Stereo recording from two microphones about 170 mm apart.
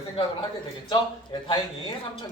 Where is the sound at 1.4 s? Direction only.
25° left (ahead or behind).